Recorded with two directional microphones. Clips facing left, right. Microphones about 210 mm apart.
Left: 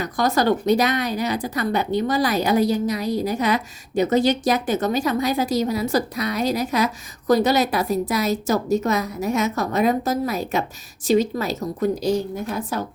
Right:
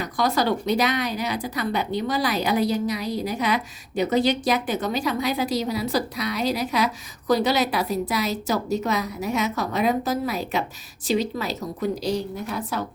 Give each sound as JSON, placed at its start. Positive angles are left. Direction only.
{"t": 0.0, "sound": "a woman's voice", "side_deg": 45}